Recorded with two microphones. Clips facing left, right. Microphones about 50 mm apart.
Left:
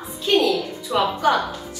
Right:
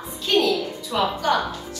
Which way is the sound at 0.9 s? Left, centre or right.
Centre.